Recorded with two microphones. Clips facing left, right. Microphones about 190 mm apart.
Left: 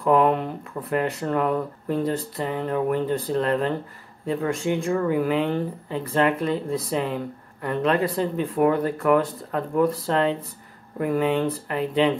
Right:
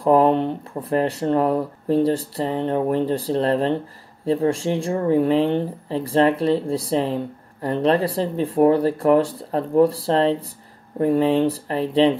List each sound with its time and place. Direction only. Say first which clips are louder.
0.0 s speech: right 3 dB; 30° right (ahead or behind)